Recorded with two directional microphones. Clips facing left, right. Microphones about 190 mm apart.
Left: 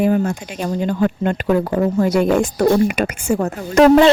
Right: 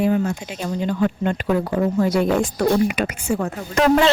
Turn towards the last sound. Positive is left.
turn(degrees=40)  # may be behind; listen again after turning